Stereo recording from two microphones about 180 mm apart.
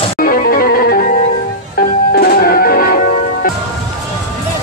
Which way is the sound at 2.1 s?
55° left (ahead or behind).